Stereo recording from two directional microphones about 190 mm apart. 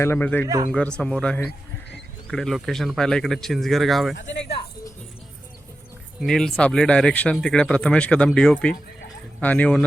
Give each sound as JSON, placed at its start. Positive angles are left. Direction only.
{"t": 0.0, "sound": "speech", "side_deg": 10}
{"t": 4.2, "sound": "speech", "side_deg": 70}
{"t": 6.1, "sound": "speech", "side_deg": 0}